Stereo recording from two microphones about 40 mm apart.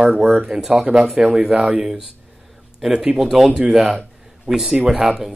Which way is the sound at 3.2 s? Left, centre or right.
Centre.